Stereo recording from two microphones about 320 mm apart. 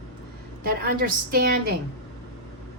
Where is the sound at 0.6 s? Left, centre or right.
Right.